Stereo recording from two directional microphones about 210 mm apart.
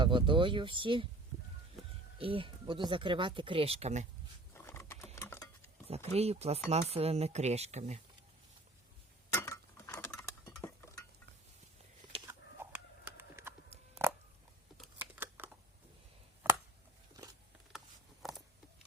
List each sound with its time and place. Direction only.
0.0 s speech: 25° right (ahead or behind)
2.1 s speech: 25° right (ahead or behind)
4.5 s patter: 15° left (ahead or behind)
5.1 s a sound: 15° left (ahead or behind)
5.9 s speech: 30° right (ahead or behind)
9.3 s chink: 15° left (ahead or behind)
13.1 s bird: 10° right (ahead or behind)
14.9 s a sound: 10° right (ahead or behind)
17.7 s a sound: centre (ahead or behind)